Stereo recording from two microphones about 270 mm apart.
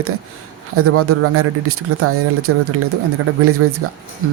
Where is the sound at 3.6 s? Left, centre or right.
Right.